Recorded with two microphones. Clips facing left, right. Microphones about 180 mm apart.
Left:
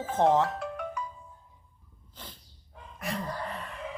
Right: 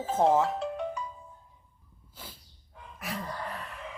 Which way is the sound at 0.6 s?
25° right (ahead or behind).